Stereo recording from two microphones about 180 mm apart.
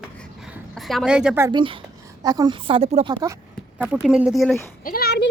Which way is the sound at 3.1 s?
20° right (ahead or behind).